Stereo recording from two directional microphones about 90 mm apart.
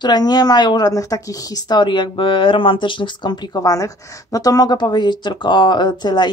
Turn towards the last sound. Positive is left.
turn(degrees=55)  # may be behind; listen again after turning